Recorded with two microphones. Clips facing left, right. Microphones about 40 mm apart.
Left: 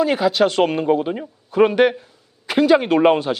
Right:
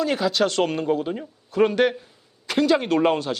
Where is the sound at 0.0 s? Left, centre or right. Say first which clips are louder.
Left 5 dB; centre.